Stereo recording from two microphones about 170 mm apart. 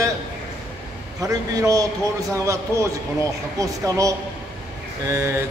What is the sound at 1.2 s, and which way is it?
A man's voice, 20° right (ahead or behind).